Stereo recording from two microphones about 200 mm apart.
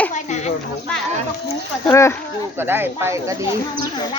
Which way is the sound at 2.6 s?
10° right (ahead or behind).